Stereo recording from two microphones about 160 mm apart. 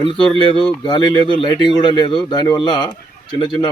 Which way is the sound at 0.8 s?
25° left (ahead or behind).